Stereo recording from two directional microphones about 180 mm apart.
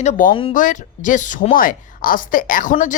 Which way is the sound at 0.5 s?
45° left (ahead or behind).